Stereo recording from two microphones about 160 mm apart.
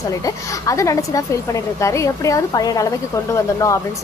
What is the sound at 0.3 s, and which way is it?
A woman's voice, 20° left (ahead or behind).